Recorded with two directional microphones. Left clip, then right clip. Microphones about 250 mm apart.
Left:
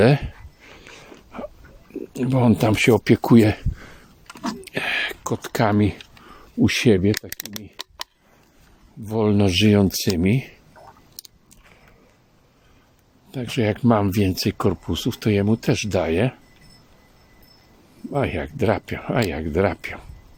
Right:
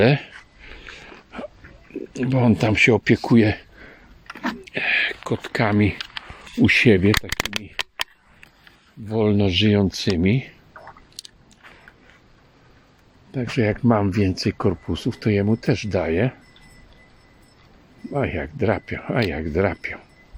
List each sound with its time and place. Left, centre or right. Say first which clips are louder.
0.0 s a sound: left 1 dB; centre
1.9 s speech: even; centre
4.3 s a sound: right 2 dB; left
5.2 s speech: left 1 dB; centre
9.0 s speech: even; centre
13.3 s speech: right 1 dB; centre
18.1 s speech: left 1 dB; centre